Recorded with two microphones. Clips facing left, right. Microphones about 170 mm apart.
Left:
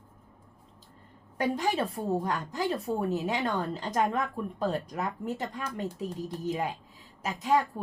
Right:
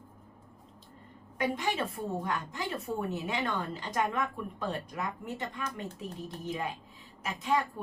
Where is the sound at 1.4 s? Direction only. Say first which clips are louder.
Left 3 dB; 40° left (ahead or behind).